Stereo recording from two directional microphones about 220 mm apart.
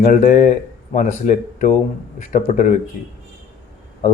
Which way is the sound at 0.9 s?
35° left (ahead or behind).